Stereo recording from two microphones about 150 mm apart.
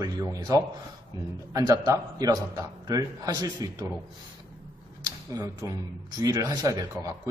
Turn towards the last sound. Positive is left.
turn(degrees=-20)  # may be behind; listen again after turning